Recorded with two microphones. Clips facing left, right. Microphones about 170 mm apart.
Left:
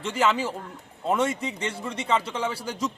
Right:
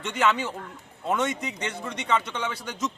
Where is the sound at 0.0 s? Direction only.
30° left (ahead or behind).